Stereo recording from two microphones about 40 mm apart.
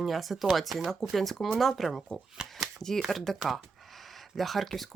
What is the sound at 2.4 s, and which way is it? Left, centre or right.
Speech, right.